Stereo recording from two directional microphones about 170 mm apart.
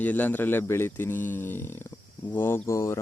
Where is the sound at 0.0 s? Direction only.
10° left (ahead or behind).